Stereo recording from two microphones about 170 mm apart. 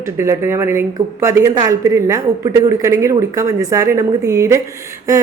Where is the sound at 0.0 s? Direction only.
15° right (ahead or behind).